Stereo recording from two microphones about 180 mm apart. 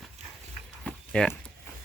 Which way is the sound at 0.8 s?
5° left (ahead or behind).